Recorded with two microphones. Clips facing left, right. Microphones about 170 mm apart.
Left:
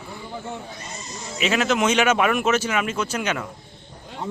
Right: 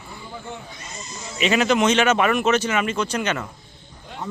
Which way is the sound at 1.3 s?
Centre (ahead or behind).